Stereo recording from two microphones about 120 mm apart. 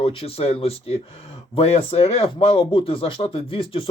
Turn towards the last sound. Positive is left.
turn(degrees=50)  # may be behind; listen again after turning